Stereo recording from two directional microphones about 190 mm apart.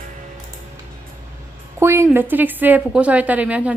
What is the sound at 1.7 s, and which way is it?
Speech, 15° right (ahead or behind).